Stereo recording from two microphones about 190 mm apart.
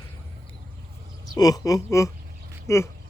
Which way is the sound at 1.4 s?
20° left (ahead or behind).